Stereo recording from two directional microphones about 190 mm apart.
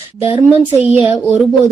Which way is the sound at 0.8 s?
10° right (ahead or behind).